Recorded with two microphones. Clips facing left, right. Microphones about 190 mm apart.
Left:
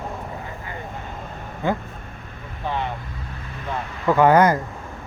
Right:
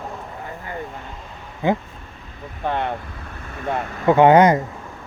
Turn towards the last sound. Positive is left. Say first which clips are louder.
# right 3 dB
turn(degrees=-20)  # may be behind; listen again after turning